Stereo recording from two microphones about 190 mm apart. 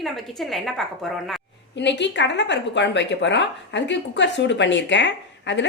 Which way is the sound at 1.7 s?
70° left (ahead or behind).